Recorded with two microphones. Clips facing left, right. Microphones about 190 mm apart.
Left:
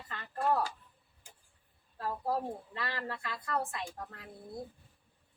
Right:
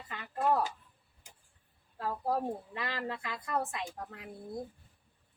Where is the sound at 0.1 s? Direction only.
15° right (ahead or behind).